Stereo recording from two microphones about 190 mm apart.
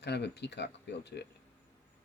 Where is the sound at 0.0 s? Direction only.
60° left (ahead or behind).